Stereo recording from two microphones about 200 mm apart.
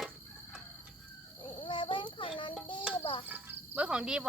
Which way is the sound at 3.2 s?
10° right (ahead or behind).